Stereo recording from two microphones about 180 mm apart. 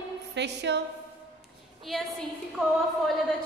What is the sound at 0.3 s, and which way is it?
Music, 75° right (ahead or behind).